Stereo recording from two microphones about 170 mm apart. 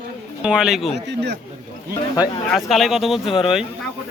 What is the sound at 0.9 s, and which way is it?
Speech, 80° right.